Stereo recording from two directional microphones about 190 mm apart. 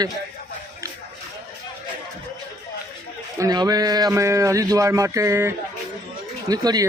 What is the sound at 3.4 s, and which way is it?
A man's voice, 20° right (ahead or behind).